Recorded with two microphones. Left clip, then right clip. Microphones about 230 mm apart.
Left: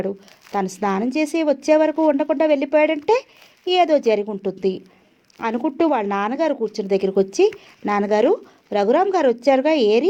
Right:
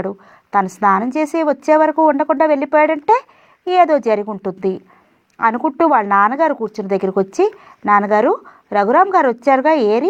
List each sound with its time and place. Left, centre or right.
0.6 s speech: centre